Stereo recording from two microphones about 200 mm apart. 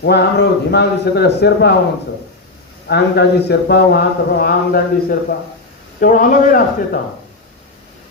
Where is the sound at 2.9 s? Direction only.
55° left (ahead or behind).